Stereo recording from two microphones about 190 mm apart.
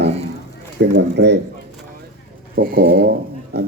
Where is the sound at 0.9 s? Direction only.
65° right (ahead or behind).